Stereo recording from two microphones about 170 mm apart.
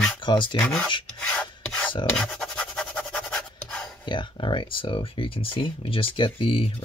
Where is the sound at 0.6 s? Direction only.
5° left (ahead or behind).